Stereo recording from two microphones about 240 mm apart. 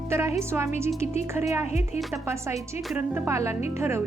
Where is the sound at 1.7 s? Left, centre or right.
Left.